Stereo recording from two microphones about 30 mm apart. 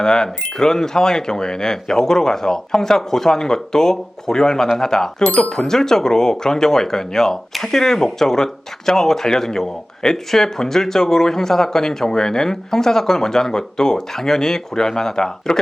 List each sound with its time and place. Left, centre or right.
0.0 s speech: left